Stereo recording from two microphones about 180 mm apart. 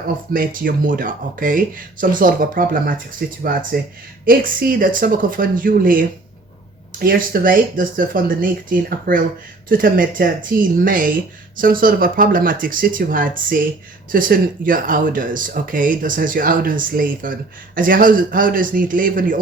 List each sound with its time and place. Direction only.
0.3 s speech: 50° right (ahead or behind)